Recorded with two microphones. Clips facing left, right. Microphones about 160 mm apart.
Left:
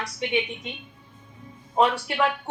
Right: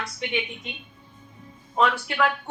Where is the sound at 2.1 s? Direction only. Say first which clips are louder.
Even; 25° left (ahead or behind).